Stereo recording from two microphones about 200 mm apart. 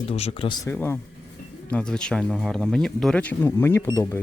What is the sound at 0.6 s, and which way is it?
Speech, 10° left (ahead or behind).